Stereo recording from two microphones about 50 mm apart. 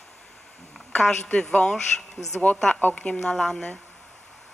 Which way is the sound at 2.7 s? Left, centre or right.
Left.